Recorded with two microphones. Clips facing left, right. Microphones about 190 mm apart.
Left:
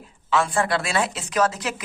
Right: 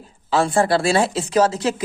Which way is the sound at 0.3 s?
35° right (ahead or behind).